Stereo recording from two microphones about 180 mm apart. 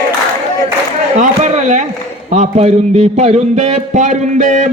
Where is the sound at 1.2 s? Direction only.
40° right (ahead or behind).